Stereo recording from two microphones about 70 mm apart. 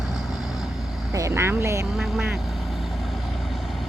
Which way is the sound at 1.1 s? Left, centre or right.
Right.